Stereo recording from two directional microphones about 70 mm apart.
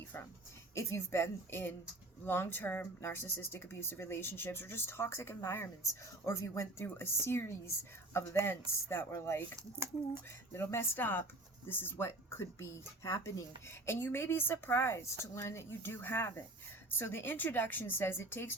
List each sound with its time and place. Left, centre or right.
0.7 s speech: left
6.7 s speech: left
10.5 s speech: left